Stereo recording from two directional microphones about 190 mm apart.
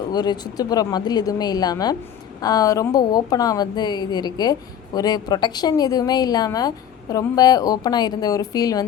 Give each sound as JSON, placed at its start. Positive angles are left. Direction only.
{"t": 0.1, "sound": "a woman's voice", "side_deg": 20}